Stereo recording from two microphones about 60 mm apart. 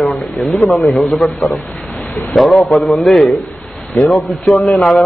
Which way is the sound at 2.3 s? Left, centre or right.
Centre.